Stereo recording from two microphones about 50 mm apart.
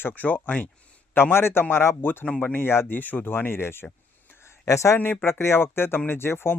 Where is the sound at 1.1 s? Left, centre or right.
Left.